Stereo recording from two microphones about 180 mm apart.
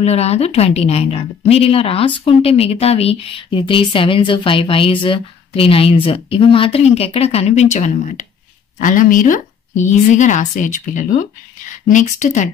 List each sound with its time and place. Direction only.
0.0 s a woman's voice: 35° left (ahead or behind)